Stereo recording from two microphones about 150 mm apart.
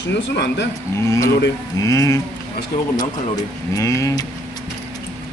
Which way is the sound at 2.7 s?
70° left (ahead or behind).